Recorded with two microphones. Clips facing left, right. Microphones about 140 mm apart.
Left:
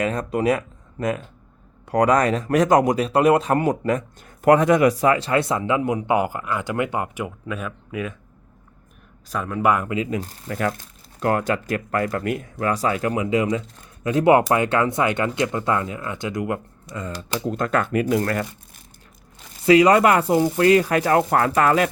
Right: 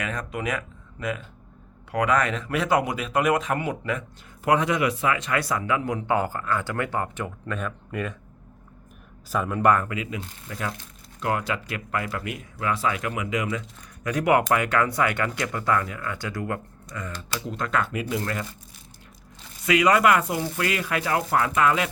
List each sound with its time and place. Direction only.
0.0 s a man's voice: 35° left (ahead or behind); by 8.1 s 5° left (ahead or behind)
9.3 s speech: centre (ahead or behind)
10.1 s speech: 40° left (ahead or behind)
10.5 s speech: 55° left (ahead or behind)
11.2 s speech: 45° left (ahead or behind); by 17.1 s 20° left (ahead or behind)
17.4 s speech: 45° left (ahead or behind)
19.6 s speech: 35° left (ahead or behind)